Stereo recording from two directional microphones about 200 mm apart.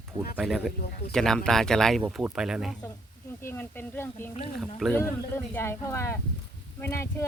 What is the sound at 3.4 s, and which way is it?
Speech, 10° left (ahead or behind).